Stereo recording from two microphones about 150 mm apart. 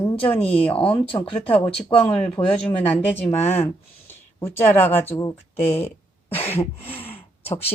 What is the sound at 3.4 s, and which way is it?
Speech, 45° left (ahead or behind).